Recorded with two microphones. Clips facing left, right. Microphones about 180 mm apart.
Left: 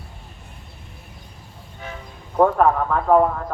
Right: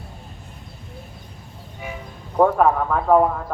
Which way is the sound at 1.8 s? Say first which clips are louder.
Right 2 dB; 10° right (ahead or behind).